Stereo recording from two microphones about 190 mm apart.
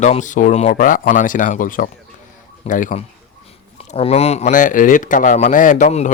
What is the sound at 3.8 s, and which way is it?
Speech, 30° left (ahead or behind).